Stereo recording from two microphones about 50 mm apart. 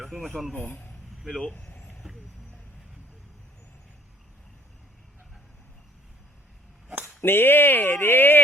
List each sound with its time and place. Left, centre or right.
0.0 s a sound: centre
0.5 s speech: left
1.5 s vehicle: left
7.2 s speech: left